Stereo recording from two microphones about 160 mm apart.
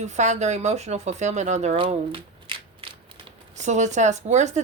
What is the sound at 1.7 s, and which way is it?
Speech, 35° right (ahead or behind).